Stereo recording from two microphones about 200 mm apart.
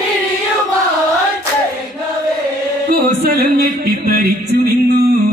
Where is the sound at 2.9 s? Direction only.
50° right (ahead or behind).